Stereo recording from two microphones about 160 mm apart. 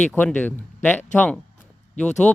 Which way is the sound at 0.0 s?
10° left (ahead or behind).